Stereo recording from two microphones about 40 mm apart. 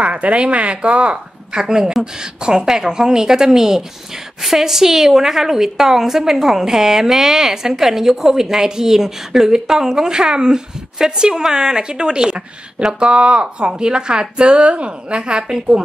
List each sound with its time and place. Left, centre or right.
0.0 s a woman's voice: right